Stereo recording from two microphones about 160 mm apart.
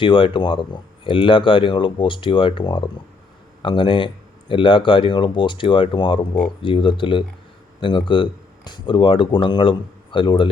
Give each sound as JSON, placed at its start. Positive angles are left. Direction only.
{"t": 0.0, "sound": "speech", "side_deg": 30}